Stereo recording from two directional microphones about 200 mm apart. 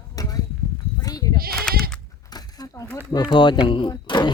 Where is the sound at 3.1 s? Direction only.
20° left (ahead or behind).